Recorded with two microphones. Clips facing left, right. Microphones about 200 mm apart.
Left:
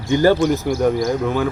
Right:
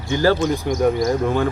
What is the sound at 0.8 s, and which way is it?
Speech, centre (ahead or behind).